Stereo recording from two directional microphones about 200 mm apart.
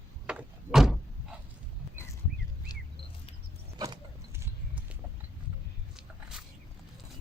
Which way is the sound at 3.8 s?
20° right (ahead or behind).